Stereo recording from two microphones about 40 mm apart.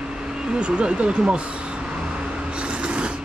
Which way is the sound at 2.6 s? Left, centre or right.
Right.